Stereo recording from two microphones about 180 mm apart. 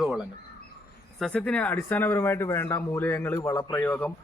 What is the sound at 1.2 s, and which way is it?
A man's voice, centre (ahead or behind).